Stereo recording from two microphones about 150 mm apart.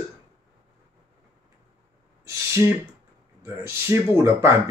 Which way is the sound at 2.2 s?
20° right (ahead or behind).